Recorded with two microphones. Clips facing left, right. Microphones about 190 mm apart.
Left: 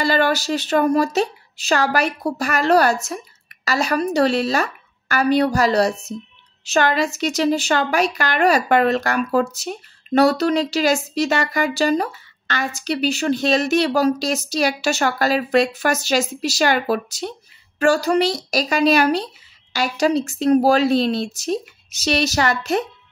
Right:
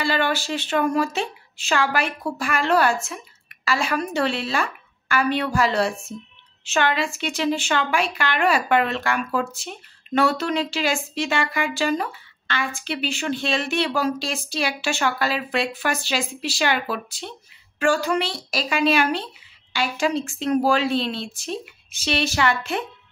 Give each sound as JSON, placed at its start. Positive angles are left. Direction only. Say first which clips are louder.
{"t": 0.0, "sound": "a woman's voice", "louder": "left 4 dB", "side_deg": 40}